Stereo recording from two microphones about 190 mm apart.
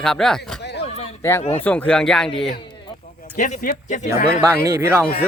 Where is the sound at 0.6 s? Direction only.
60° left (ahead or behind).